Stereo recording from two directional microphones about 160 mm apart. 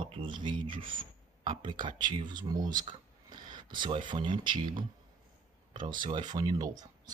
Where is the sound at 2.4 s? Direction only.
25° right (ahead or behind).